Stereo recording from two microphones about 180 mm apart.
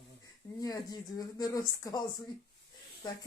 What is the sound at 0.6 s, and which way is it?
Speech, 20° left (ahead or behind).